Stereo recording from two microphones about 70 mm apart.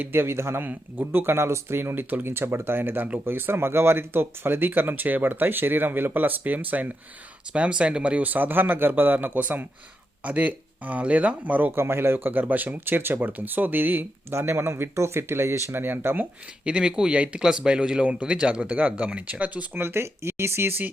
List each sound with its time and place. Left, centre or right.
0.0 s speech: right
16.6 s speech: centre
19.8 s speech: right